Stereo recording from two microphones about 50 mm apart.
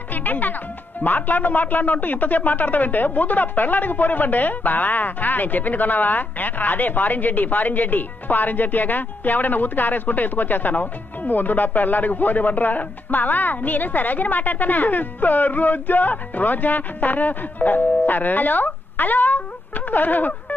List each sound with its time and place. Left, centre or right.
0.1 s music: left
1.0 s speech: left
19.9 s telephone dialing: left